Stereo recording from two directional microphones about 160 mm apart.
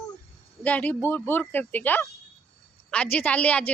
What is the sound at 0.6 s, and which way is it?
A woman's voice, 10° left (ahead or behind).